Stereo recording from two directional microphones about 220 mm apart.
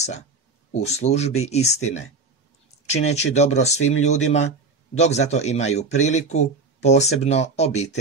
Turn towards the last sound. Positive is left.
turn(degrees=30)  # may be behind; listen again after turning